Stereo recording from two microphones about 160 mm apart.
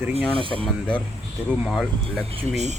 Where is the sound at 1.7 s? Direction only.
Centre (ahead or behind).